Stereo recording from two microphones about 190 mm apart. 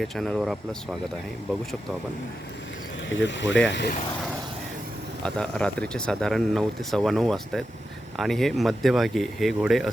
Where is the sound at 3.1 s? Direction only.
70° left (ahead or behind).